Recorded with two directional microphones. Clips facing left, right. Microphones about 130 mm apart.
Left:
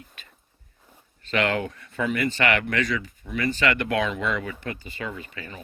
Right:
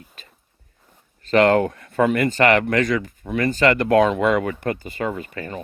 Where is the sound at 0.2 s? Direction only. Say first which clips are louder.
Right 3 dB; 35° right (ahead or behind).